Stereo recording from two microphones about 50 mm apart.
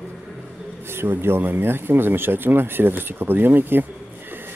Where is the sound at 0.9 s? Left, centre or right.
Right.